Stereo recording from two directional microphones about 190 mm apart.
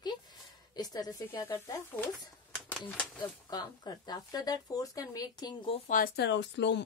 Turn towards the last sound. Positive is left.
turn(degrees=65)  # may be behind; listen again after turning